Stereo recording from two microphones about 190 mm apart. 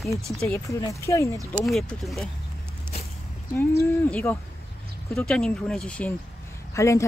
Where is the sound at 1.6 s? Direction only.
Centre (ahead or behind).